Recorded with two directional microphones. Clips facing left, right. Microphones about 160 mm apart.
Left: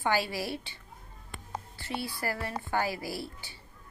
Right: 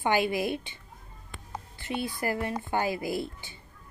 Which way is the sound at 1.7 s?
20° right (ahead or behind).